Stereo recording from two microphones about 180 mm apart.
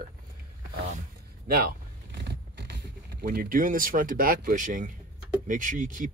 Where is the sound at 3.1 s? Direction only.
60° right (ahead or behind).